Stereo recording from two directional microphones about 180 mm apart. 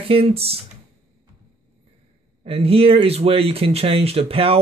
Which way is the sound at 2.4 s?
30° right (ahead or behind).